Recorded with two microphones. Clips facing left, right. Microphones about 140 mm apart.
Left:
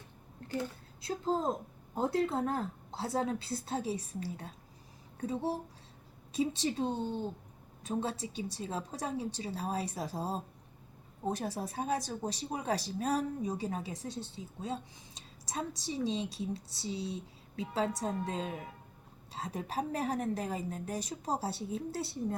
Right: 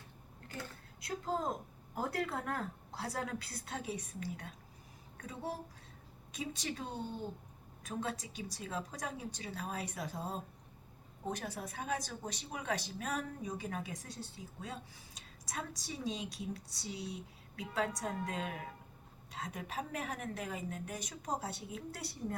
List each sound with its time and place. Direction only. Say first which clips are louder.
1.0 s a woman's voice: left 5 dB; 30° left (ahead or behind)